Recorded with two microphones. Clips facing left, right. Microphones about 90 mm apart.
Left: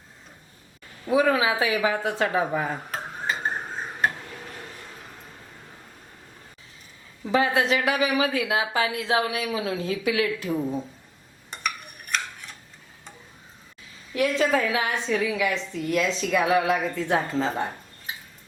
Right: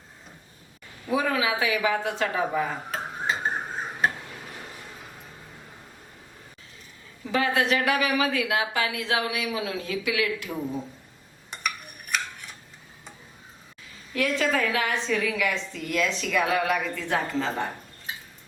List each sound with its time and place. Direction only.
1.1 s a woman's voice: 25° left (ahead or behind)
2.9 s dishes: centre (ahead or behind)
7.3 s a woman's voice: 25° left (ahead or behind)
11.5 s stir: centre (ahead or behind)
14.2 s a woman's voice: 20° left (ahead or behind)